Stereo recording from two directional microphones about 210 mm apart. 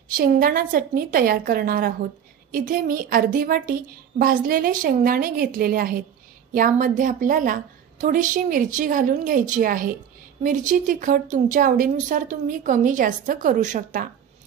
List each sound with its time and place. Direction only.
0.1 s a woman's voice: 45° right (ahead or behind)